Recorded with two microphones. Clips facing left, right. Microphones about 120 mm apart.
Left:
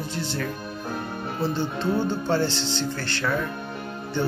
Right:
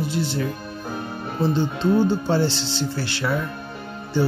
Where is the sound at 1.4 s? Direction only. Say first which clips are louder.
Right 5 dB; 15° right (ahead or behind).